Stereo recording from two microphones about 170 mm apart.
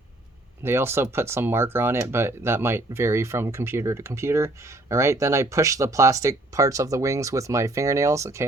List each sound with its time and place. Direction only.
0.6 s speech: 15° right (ahead or behind)